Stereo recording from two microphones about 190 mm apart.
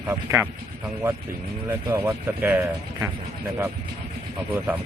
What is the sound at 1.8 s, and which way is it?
Speech, 15° right (ahead or behind).